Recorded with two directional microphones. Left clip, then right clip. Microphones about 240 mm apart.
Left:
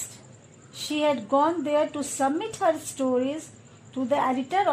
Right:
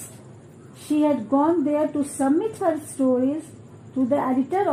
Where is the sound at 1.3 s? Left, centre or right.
Left.